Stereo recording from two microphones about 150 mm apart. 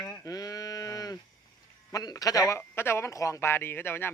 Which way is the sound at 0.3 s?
25° left (ahead or behind).